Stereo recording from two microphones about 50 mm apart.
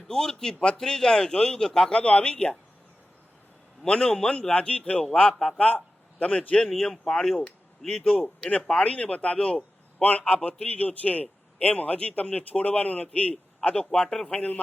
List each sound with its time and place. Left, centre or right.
0.1 s a man's voice: centre
3.8 s a man's voice: centre
5.5 s a man's voice: left
7.0 s a man's voice: centre
8.4 s a man's voice: left
14.3 s a man's voice: left